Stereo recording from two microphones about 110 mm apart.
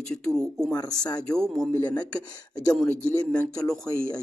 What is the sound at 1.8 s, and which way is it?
Speech, 35° left (ahead or behind).